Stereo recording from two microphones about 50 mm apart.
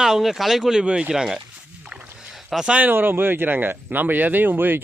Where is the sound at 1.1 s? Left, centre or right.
Centre.